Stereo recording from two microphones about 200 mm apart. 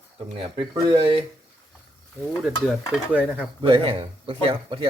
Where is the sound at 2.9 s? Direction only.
5° right (ahead or behind).